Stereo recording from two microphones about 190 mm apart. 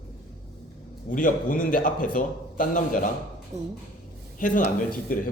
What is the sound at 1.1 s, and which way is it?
A man's voice, 45° left (ahead or behind).